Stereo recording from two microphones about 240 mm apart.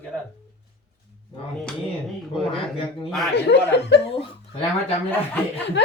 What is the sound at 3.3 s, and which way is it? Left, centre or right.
Speech, left.